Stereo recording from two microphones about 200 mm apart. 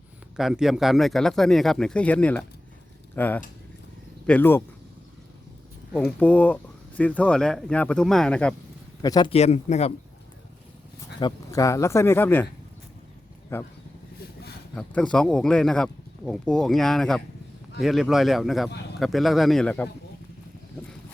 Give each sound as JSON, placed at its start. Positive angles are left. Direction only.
{"t": 0.3, "sound": "speech", "side_deg": 0}
{"t": 5.9, "sound": "speech", "side_deg": 5}
{"t": 9.0, "sound": "speech", "side_deg": 20}
{"t": 9.3, "sound": "speech", "side_deg": 35}
{"t": 11.2, "sound": "speech", "side_deg": 20}
{"t": 13.5, "sound": "speech", "side_deg": 10}
{"t": 14.8, "sound": "speech", "side_deg": 5}